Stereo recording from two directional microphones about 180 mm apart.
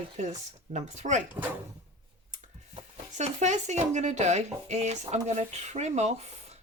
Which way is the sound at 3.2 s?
40° right (ahead or behind).